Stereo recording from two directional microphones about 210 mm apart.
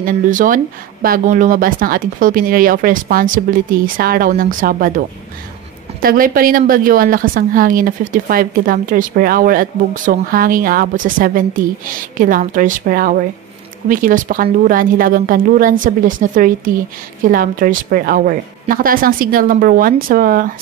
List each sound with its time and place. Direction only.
0.0 s speech: 40° right (ahead or behind)
6.0 s a woman's voice: 45° right (ahead or behind)